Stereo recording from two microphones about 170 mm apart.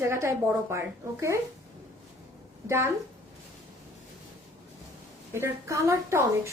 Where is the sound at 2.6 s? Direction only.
15° right (ahead or behind).